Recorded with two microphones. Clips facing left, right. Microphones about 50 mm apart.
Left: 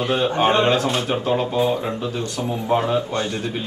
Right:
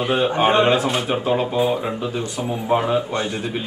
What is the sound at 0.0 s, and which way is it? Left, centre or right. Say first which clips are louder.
Speech: right 1 dB; centre.